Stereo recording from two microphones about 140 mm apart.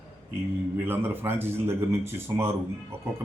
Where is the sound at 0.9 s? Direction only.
15° right (ahead or behind).